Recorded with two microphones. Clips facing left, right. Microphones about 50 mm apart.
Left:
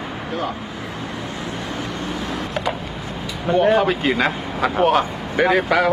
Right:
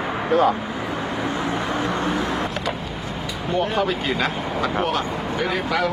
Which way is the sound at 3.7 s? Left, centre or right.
Centre.